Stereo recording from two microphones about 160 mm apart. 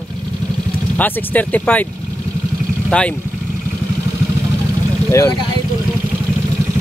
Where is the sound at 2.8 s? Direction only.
5° left (ahead or behind).